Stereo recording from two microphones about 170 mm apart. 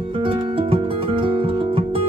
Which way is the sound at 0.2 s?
30° right (ahead or behind).